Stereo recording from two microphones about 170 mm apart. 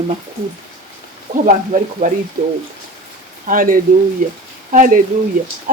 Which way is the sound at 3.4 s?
55° right (ahead or behind).